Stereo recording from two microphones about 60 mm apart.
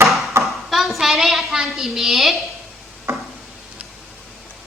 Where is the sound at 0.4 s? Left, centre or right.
Centre.